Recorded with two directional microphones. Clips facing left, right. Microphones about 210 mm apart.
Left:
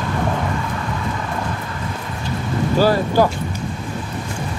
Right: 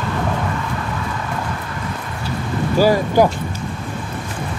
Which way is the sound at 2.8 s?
15° right (ahead or behind).